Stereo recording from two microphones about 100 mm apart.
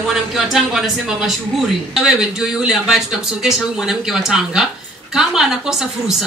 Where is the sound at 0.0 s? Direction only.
5° right (ahead or behind).